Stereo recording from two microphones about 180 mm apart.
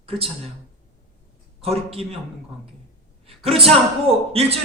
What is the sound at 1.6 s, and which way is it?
Speech, 35° right (ahead or behind).